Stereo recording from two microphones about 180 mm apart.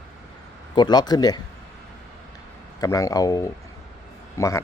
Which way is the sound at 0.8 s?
20° left (ahead or behind).